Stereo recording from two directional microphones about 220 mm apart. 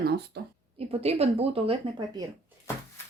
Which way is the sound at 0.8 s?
25° right (ahead or behind).